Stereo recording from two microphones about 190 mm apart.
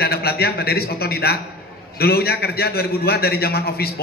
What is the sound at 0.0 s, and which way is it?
A man's voice, 55° left (ahead or behind).